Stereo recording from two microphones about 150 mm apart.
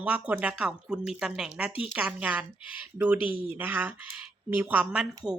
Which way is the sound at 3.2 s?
35° left (ahead or behind).